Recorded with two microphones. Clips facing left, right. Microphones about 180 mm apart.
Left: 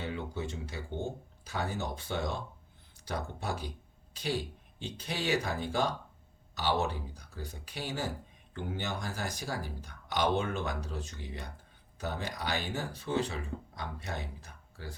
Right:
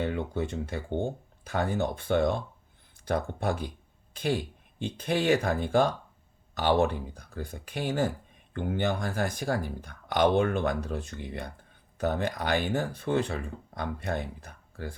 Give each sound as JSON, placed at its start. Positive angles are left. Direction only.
{"t": 0.0, "sound": "speech", "side_deg": -55}